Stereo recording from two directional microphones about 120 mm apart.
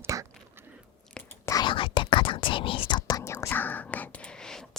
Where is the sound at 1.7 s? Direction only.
45° left (ahead or behind).